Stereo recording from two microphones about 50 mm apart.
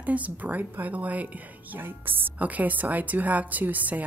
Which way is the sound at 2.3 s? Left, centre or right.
Right.